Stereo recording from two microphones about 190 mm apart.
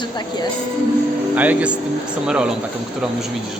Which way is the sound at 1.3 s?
10° right (ahead or behind).